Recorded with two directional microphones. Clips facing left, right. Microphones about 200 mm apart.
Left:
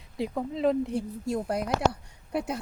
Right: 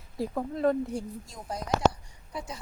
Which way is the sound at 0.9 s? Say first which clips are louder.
Left 8 dB; 65° left (ahead or behind).